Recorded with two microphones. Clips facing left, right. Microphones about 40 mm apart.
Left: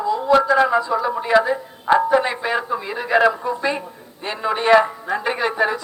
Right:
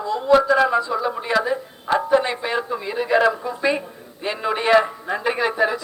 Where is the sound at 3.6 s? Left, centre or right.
Centre.